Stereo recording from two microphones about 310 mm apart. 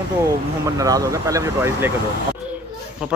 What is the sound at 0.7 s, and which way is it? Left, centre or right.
A man's voice, centre.